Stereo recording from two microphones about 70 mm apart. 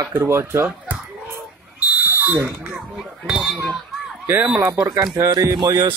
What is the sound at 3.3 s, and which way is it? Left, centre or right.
Speech, centre.